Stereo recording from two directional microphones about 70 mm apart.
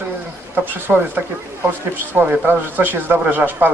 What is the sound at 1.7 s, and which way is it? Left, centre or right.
Speech, right.